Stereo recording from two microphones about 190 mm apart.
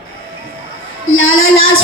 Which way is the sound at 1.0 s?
90° left.